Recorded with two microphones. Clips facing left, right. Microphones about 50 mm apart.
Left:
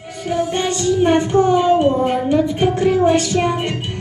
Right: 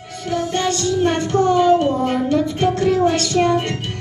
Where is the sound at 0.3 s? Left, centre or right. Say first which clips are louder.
Left 1 dB; centre.